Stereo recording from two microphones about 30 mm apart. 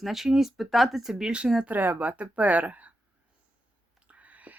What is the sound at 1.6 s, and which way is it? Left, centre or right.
Speech, right.